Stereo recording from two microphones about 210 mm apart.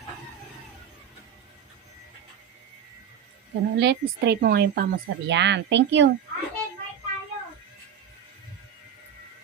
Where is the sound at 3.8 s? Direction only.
55° right (ahead or behind).